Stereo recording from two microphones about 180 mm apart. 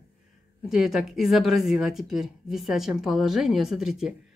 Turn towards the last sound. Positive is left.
turn(degrees=-5)  # may be behind; listen again after turning